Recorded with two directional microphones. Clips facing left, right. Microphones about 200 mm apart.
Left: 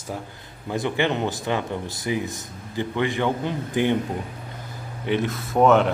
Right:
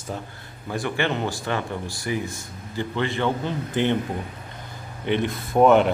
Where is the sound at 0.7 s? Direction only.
20° left (ahead or behind).